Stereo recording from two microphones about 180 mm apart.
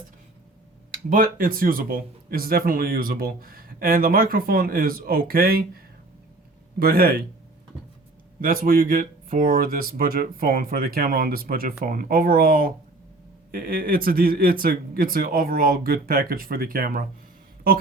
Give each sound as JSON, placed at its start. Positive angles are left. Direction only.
{"t": 1.1, "sound": "speech", "side_deg": -55}
{"t": 6.7, "sound": "a man's voice", "side_deg": -55}
{"t": 8.4, "sound": "a man's voice", "side_deg": -50}